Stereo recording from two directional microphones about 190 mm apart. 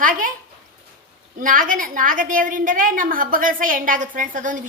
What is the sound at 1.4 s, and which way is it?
A woman's voice, 45° right (ahead or behind).